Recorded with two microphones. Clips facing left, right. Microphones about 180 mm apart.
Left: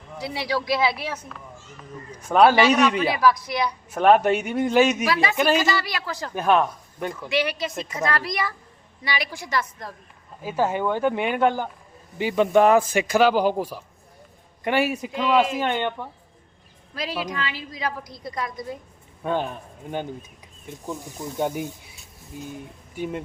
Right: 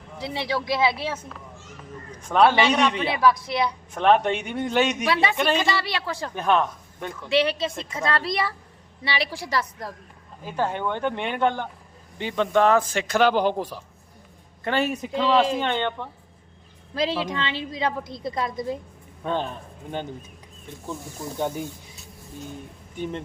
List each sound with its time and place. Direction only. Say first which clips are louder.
0.2 s a woman's voice: left 1 dB; 25° right (ahead or behind)
2.1 s speech: left 2 dB; 5° left (ahead or behind)
3.1 s a woman's voice: even; 25° right (ahead or behind)
3.9 s speech: left 3 dB; 5° left (ahead or behind)
5.7 s a woman's voice: even; 30° right (ahead or behind)
6.3 s speech: left 2 dB; 5° left (ahead or behind)
7.3 s a woman's voice: right 4 dB; 30° right (ahead or behind)
10.4 s speech: left 3 dB; 5° left (ahead or behind)
16.9 s a woman's voice: right 4 dB; 25° right (ahead or behind)
19.2 s speech: left 2 dB; 10° left (ahead or behind)
23.0 s speech: left 1 dB; 5° left (ahead or behind)